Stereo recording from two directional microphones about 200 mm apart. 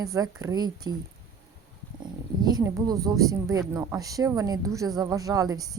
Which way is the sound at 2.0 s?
20° right (ahead or behind).